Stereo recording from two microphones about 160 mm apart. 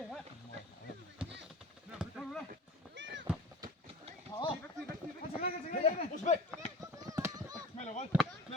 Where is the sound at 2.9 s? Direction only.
90° right.